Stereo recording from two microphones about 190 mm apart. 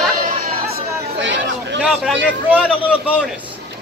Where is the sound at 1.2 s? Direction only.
70° right (ahead or behind).